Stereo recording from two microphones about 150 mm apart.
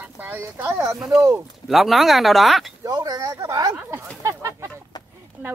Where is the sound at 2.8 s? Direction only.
25° right (ahead or behind).